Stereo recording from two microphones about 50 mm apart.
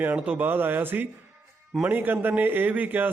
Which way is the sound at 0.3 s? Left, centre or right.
Right.